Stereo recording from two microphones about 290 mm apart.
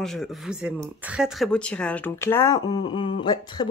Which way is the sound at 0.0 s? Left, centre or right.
Centre.